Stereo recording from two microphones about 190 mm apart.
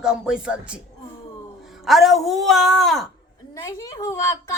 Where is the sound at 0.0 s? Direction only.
5° right (ahead or behind).